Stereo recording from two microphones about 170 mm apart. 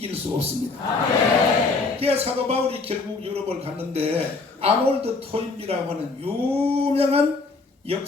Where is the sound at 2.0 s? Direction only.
35° right (ahead or behind).